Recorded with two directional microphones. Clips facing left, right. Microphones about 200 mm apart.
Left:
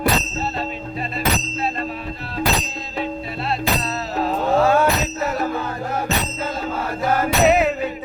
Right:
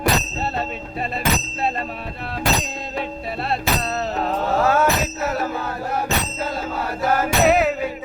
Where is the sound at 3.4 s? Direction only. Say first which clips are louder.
Even; 55° right (ahead or behind).